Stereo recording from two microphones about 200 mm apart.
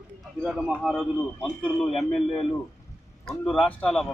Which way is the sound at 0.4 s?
Centre (ahead or behind).